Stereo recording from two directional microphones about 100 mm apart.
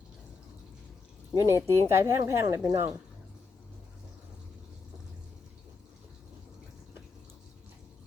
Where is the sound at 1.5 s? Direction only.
25° right (ahead or behind).